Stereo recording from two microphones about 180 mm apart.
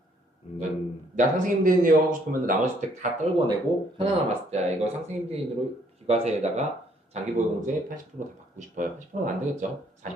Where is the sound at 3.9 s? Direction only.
35° right (ahead or behind).